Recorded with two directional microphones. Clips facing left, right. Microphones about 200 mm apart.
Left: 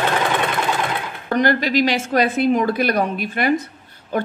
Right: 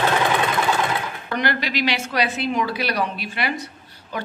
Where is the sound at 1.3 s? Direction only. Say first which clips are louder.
Left 7 dB; 45° left (ahead or behind).